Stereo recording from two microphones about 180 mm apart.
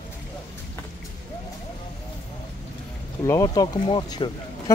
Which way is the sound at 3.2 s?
20° left (ahead or behind).